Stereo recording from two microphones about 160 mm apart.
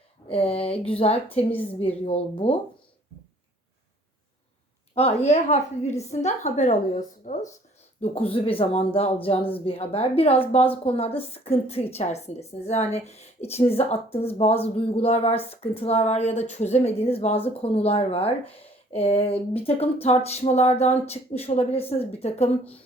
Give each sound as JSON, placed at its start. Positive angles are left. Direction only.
{"t": 0.3, "sound": "a woman's voice", "side_deg": 35}
{"t": 4.9, "sound": "a woman's voice", "side_deg": 40}
{"t": 8.3, "sound": "a woman's voice", "side_deg": 35}